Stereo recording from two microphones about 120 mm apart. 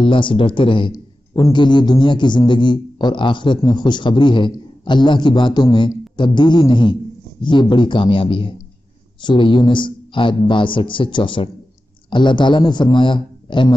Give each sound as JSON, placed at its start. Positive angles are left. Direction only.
{"t": 0.0, "sound": "a man's voice", "side_deg": 45}